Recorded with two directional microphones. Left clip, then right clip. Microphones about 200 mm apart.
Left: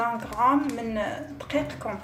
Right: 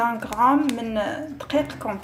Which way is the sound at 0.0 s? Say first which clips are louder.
Right 4 dB; 25° right (ahead or behind).